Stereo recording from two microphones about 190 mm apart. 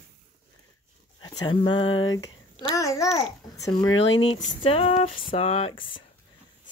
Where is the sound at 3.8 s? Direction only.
25° left (ahead or behind).